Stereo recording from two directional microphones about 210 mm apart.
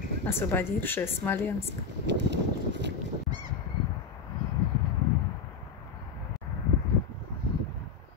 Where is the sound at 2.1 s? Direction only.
55° right (ahead or behind).